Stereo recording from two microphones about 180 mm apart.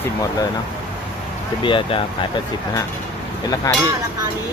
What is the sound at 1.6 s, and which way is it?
Speech, 30° left (ahead or behind).